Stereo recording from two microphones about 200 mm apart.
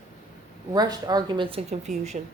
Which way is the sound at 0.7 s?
20° right (ahead or behind).